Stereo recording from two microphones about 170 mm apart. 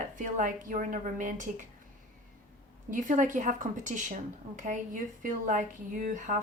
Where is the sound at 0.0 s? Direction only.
50° right (ahead or behind).